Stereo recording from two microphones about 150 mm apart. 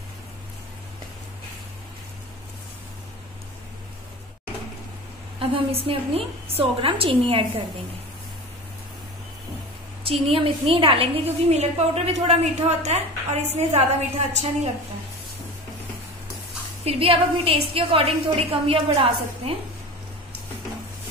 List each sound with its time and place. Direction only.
5.4 s a woman's voice: 40° right (ahead or behind)
10.2 s a woman's voice: 35° right (ahead or behind)
16.8 s a woman's voice: 40° right (ahead or behind)